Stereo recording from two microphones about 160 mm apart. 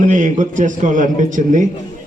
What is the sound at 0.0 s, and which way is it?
A man's voice, 50° right (ahead or behind).